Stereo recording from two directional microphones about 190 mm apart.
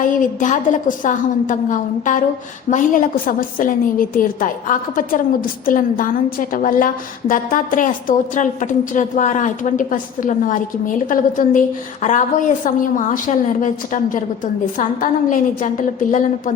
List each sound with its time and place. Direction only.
0.0 s a woman's voice: 45° left (ahead or behind)
2.6 s a woman's voice: 45° left (ahead or behind)